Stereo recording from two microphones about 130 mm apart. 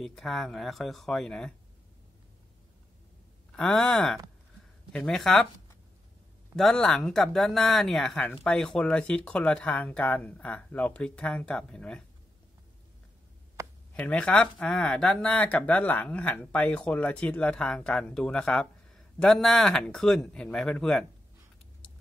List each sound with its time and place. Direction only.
0.0 s speech: 5° left (ahead or behind)
3.5 s speech: 5° left (ahead or behind)
6.5 s speech: 5° left (ahead or behind)
13.6 s a sound: 20° right (ahead or behind)
13.9 s speech: 10° left (ahead or behind)